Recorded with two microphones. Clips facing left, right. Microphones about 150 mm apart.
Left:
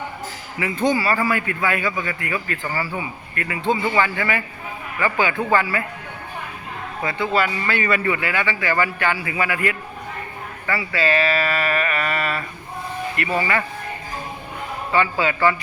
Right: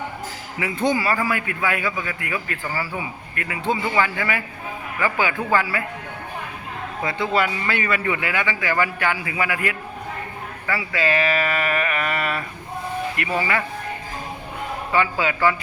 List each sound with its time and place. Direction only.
0.6 s a man's voice: 15° right (ahead or behind)
7.3 s a man's voice: 15° right (ahead or behind)
7.9 s a man's voice: 5° right (ahead or behind)
14.9 s a man's voice: 10° right (ahead or behind)